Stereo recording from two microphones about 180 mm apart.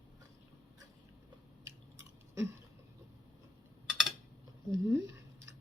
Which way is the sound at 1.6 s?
15° right (ahead or behind).